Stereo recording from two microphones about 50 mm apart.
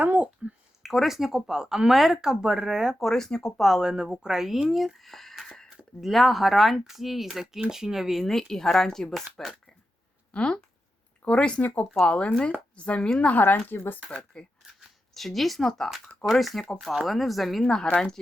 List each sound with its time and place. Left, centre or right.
0.0 s a sound: right
0.8 s speech: centre
3.0 s speech: centre
3.6 s speech: centre
8.2 s speech: centre
10.3 s a woman's voice: left
13.4 s speech: left
14.1 s speech: centre
15.1 s speech: centre
17.7 s speech: centre